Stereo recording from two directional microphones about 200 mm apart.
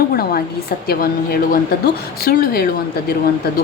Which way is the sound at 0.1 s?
50° left (ahead or behind).